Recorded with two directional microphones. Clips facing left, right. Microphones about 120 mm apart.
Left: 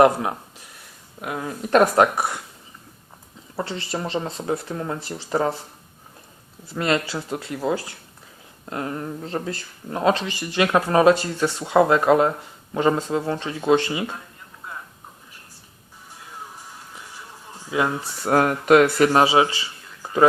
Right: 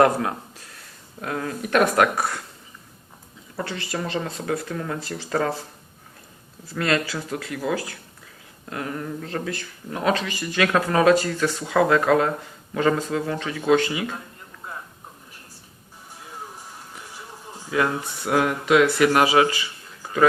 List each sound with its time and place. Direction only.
0.0 s speech: 20° left (ahead or behind)
1.6 s speech: 30° left (ahead or behind)
3.6 s speech: 25° left (ahead or behind)
6.7 s speech: 20° left (ahead or behind)
18.0 s speech: 40° left (ahead or behind)